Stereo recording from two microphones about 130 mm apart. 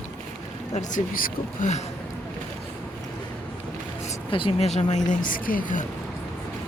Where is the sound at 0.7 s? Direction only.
85° left.